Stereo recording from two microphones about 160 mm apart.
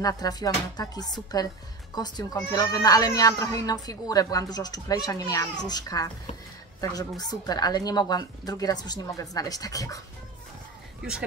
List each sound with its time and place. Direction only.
0.0 s speech: 25° left (ahead or behind)